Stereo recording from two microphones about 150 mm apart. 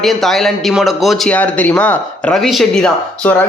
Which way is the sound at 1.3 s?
10° left (ahead or behind).